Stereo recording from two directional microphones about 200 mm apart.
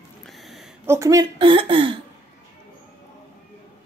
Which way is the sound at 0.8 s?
15° right (ahead or behind).